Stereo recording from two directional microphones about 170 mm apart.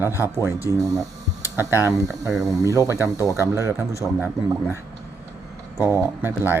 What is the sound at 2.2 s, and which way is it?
Speech, centre (ahead or behind).